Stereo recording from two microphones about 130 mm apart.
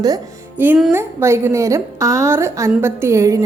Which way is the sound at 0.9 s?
20° right (ahead or behind).